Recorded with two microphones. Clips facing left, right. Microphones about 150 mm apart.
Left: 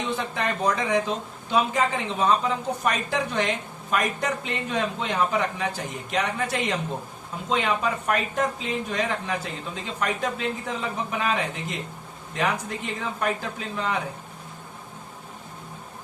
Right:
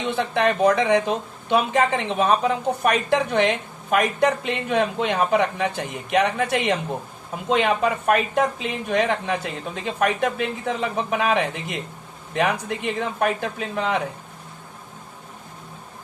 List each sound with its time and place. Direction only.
0.2 s a woman's voice: 70° right (ahead or behind)